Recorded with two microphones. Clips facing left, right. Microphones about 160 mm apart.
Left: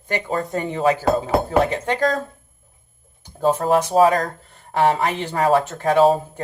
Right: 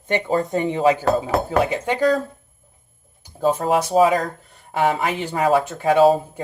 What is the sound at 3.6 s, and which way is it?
Speech, 5° right (ahead or behind).